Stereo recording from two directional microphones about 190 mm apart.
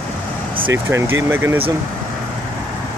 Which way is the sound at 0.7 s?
15° right (ahead or behind).